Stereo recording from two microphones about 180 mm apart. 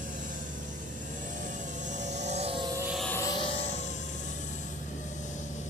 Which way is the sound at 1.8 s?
40° right (ahead or behind).